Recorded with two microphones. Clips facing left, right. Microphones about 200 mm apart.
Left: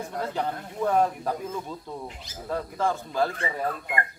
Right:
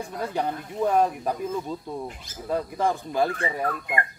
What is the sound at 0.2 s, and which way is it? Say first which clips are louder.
Speech: right 2 dB; 15° right (ahead or behind).